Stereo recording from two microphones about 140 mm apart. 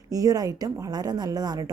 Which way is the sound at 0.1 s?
25° right (ahead or behind).